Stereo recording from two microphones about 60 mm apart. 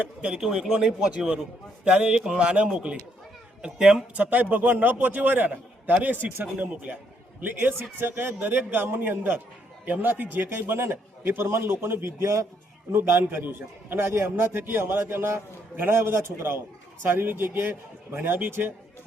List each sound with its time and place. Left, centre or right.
0.2 s a man's voice: centre
4.1 s a man's voice: right
7.4 s a man's voice: right
12.2 s a man's voice: right
12.9 s a man's voice: right